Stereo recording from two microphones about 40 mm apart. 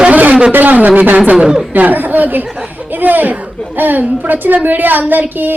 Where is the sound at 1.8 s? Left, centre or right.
Right.